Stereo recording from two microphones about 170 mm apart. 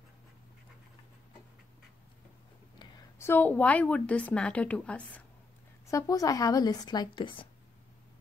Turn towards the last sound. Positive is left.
turn(degrees=25)  # may be behind; listen again after turning